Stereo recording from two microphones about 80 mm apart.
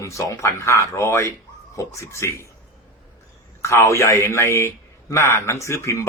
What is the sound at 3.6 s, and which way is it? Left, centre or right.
Speech, left.